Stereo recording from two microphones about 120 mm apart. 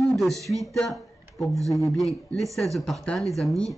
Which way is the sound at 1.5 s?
25° right (ahead or behind).